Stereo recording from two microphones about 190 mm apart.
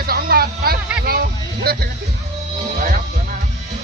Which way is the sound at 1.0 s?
50° right (ahead or behind).